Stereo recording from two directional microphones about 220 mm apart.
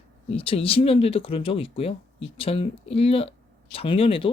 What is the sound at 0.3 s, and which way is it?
Speech, 25° left (ahead or behind).